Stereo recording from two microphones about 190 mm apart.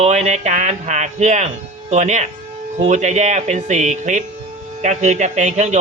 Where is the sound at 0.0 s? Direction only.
35° right (ahead or behind).